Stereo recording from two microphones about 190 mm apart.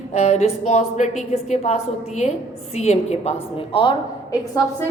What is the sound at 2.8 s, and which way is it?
Speech, 35° left (ahead or behind).